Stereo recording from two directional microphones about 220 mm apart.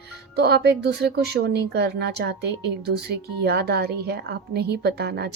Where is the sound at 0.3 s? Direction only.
50° right (ahead or behind).